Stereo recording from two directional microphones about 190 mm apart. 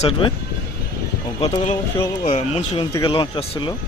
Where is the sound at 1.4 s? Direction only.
35° left (ahead or behind).